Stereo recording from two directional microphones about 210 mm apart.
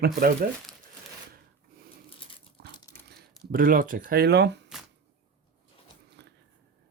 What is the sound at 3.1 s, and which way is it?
Speech, 45° right (ahead or behind).